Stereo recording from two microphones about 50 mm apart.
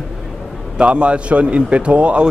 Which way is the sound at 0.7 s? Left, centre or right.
Right.